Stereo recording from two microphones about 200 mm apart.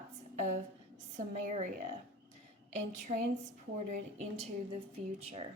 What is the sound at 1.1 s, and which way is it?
Speech, 35° right (ahead or behind).